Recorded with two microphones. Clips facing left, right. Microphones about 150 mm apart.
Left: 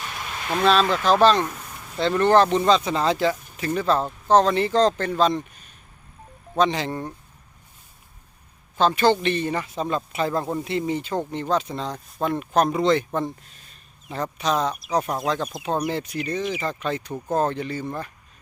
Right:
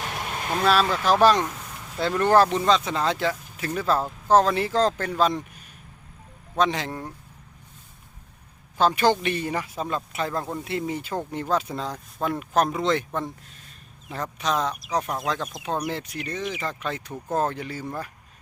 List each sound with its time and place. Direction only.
0.0 s a sound: 50° right (ahead or behind)
0.6 s speech: 5° right (ahead or behind)
6.6 s speech: centre (ahead or behind)
8.8 s speech: 10° right (ahead or behind)
14.1 s speech: centre (ahead or behind)